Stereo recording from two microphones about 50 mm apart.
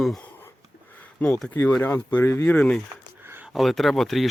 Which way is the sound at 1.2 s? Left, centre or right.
Left.